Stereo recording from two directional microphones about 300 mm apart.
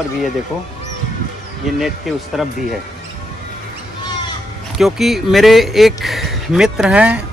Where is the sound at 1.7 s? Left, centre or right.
Centre.